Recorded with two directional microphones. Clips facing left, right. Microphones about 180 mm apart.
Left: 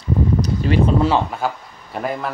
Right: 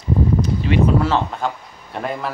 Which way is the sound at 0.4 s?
40° left (ahead or behind).